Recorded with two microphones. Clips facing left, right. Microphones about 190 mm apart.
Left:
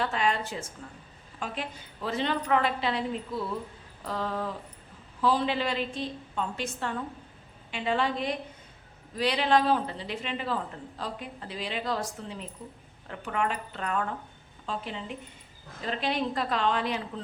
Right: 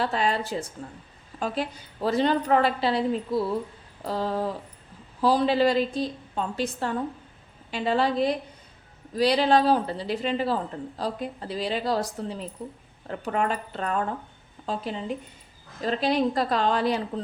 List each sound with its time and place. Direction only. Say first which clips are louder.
0.0 s speech: right 3 dB; 35° right (ahead or behind)